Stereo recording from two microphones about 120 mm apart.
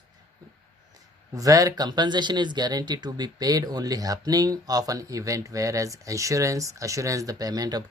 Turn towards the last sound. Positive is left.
turn(degrees=-35)  # may be behind; listen again after turning